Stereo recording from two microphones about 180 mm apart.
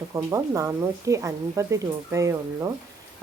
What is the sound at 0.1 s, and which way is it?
Speech, 15° right (ahead or behind).